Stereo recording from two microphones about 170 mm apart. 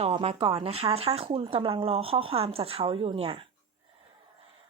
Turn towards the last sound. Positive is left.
turn(degrees=-30)  # may be behind; listen again after turning